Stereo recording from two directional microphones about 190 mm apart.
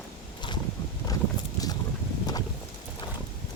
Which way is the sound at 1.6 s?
20° left (ahead or behind).